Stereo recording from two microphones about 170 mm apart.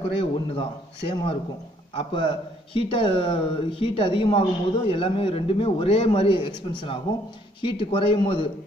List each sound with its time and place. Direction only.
0.2 s a man's voice: 30° left (ahead or behind)